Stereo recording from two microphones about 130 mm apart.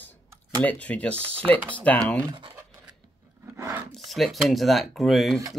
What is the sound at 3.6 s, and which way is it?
Roaring cats, 25° right (ahead or behind).